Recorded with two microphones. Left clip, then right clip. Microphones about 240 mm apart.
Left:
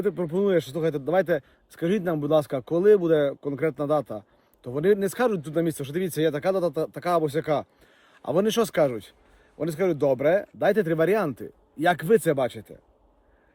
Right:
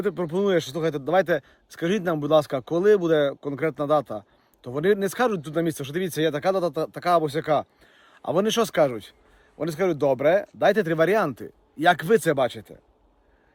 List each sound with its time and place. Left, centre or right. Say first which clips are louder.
0.0 s a man's voice: even; centre